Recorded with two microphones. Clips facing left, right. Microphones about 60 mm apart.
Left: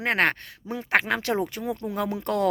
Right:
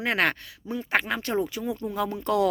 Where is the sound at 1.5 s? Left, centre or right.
Left.